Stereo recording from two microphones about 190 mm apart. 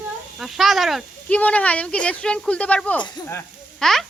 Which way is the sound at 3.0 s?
25° left (ahead or behind).